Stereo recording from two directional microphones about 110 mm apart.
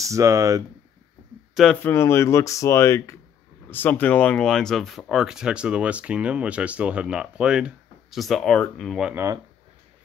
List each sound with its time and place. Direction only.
0.0 s speech: 30° right (ahead or behind)
1.5 s speech: centre (ahead or behind)
1.8 s speech: 20° left (ahead or behind)
9.1 s speech: 25° right (ahead or behind)